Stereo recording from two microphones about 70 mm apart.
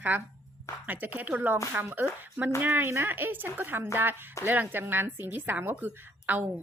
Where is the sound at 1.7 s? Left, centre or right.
Right.